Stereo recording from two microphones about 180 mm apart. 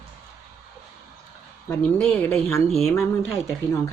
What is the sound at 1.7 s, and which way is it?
Speech, 5° left (ahead or behind).